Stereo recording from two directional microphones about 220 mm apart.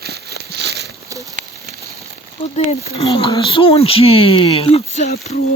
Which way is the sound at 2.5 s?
30° left (ahead or behind).